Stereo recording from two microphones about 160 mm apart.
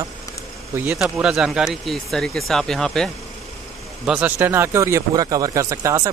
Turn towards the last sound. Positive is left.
turn(degrees=-20)  # may be behind; listen again after turning